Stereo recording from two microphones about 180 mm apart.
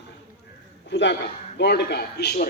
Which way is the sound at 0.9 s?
75° left (ahead or behind).